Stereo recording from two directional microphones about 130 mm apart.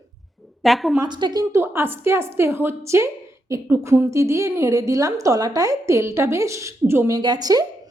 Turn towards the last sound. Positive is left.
turn(degrees=-30)  # may be behind; listen again after turning